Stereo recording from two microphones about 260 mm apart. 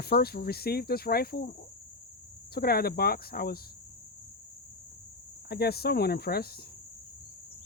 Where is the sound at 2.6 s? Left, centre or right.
Left.